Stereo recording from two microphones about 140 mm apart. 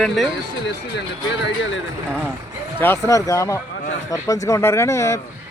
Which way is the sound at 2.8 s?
20° left (ahead or behind).